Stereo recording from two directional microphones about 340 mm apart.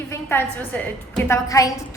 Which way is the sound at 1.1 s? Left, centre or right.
Centre.